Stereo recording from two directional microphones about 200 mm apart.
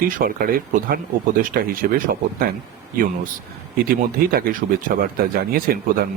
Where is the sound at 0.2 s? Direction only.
45° right (ahead or behind).